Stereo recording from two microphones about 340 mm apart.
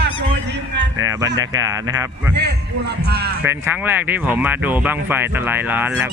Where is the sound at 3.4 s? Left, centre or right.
Centre.